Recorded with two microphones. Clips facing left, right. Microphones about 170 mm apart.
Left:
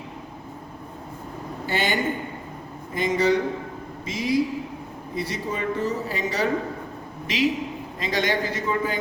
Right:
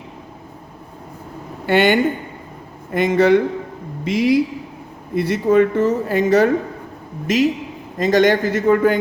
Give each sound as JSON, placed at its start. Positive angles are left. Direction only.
{"t": 1.6, "sound": "a woman's voice", "side_deg": -65}